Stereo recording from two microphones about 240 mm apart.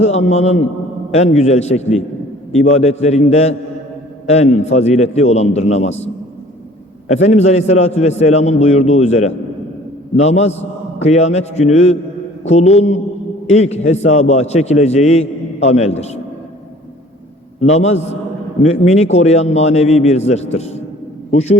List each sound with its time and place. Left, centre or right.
0.0 s a man's voice: left
7.1 s a man's voice: left
17.7 s a man's voice: left